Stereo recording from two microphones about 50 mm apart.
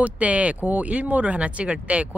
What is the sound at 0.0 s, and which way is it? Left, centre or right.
Speech, right.